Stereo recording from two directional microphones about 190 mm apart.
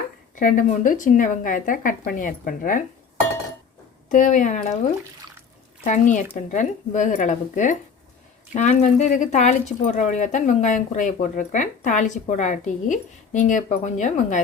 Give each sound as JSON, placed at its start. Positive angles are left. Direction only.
{"t": 0.3, "sound": "speech", "side_deg": 45}
{"t": 4.1, "sound": "speech", "side_deg": 40}
{"t": 5.8, "sound": "speech", "side_deg": 40}